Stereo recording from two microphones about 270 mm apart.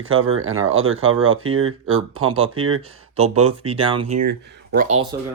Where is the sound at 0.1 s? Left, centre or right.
Right.